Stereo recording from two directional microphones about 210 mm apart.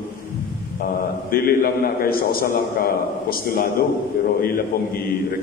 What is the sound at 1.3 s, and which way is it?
A man's voice, 45° left (ahead or behind).